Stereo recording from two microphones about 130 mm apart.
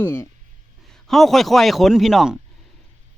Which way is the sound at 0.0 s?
15° left (ahead or behind).